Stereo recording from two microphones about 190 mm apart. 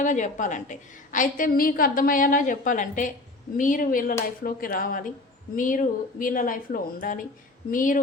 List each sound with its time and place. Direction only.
0.0 s a woman's voice: 40° left (ahead or behind)